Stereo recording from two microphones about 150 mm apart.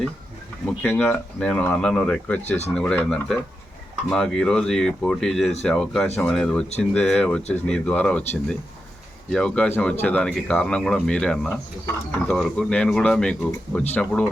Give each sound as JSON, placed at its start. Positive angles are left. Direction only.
{"t": 0.8, "sound": "speech", "side_deg": 10}
{"t": 2.4, "sound": "speech", "side_deg": 50}
{"t": 2.7, "sound": "speech", "side_deg": 5}